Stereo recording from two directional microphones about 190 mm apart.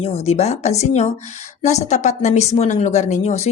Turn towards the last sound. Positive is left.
turn(degrees=35)  # may be behind; listen again after turning